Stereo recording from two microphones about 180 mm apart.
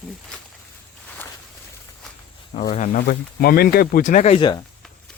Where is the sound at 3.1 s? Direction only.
55° left (ahead or behind).